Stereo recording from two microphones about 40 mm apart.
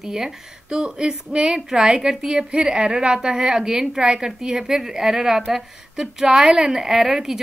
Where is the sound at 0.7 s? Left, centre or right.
Right.